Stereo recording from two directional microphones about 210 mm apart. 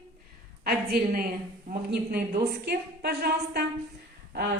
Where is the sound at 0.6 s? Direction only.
45° right (ahead or behind).